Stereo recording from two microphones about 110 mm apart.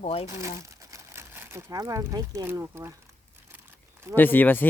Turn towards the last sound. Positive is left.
turn(degrees=15)  # may be behind; listen again after turning